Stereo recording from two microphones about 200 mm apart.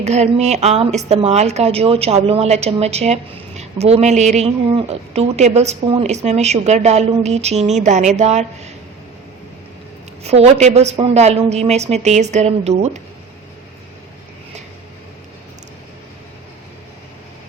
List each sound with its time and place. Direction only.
0.0 s a woman's voice: 35° right (ahead or behind)
10.2 s a woman's voice: 35° right (ahead or behind)